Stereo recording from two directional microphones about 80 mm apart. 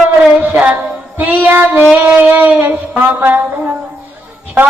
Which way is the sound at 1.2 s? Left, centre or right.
Right.